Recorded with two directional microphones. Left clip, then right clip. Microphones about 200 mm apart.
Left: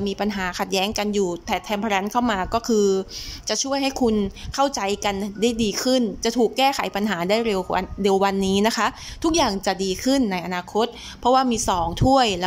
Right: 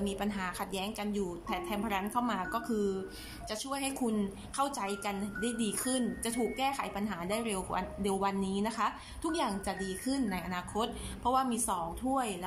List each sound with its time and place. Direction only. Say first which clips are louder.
0.0 s a woman's voice: left 11 dB; 30° left (ahead or behind); by 12.4 s 50° left (ahead or behind)